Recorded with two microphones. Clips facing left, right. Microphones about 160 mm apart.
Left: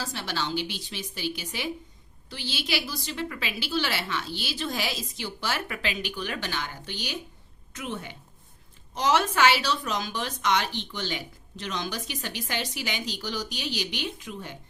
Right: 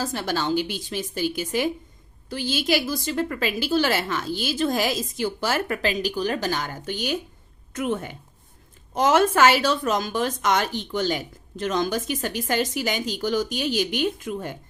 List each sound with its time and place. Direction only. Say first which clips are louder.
0.0 s a woman's voice: right 6 dB; 45° right (ahead or behind)